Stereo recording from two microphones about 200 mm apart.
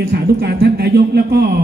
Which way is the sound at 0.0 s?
55° right (ahead or behind).